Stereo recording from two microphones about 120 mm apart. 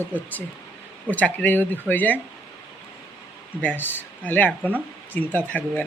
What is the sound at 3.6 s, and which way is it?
Speech, 15° left (ahead or behind).